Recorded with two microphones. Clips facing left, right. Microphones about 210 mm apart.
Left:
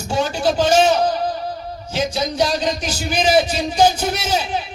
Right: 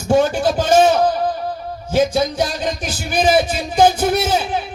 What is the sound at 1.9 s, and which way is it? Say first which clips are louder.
A man's voice: right 5 dB; 50° right (ahead or behind).